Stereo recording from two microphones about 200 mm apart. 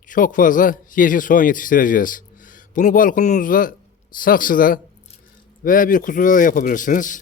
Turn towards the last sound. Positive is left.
turn(degrees=40)  # may be behind; listen again after turning